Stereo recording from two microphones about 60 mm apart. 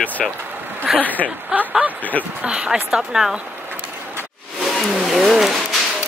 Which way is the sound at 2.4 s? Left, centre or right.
Centre.